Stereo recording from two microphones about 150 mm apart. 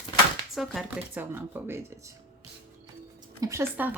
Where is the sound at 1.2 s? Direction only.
15° right (ahead or behind).